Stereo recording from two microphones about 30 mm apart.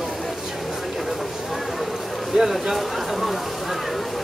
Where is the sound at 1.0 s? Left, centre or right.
Centre.